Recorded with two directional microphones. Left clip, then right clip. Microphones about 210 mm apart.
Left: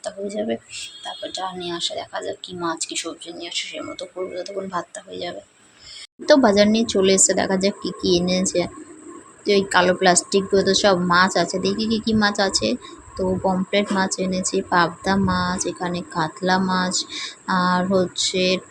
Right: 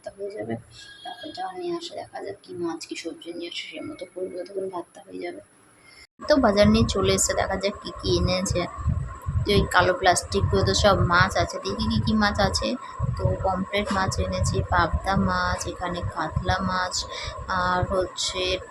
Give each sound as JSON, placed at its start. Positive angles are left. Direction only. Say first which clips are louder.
{"t": 0.0, "sound": "speech", "louder": "left 6 dB", "side_deg": 10}
{"t": 6.2, "sound": "speech", "louder": "left 4 dB", "side_deg": 20}